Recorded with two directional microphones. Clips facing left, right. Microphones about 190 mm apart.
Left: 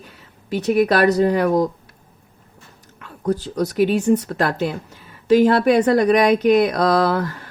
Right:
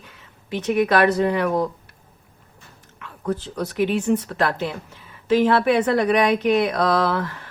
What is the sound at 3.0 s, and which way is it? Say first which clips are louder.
Speech: left 4 dB; 40° left (ahead or behind).